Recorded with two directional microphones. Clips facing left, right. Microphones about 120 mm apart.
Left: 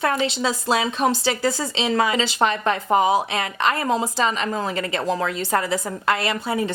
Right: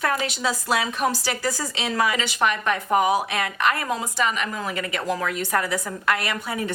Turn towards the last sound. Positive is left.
turn(degrees=25)  # may be behind; listen again after turning